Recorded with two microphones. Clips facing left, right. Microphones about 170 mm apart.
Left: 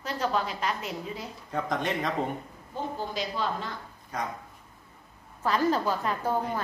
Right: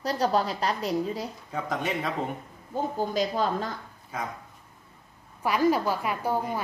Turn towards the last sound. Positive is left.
turn(degrees=-10)  # may be behind; listen again after turning